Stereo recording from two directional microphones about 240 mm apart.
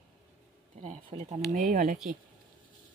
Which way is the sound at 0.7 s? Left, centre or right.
Right.